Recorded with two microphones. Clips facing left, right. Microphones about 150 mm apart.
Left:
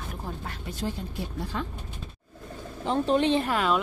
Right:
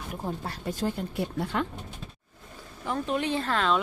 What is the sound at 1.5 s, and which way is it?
Speech, 65° right (ahead or behind).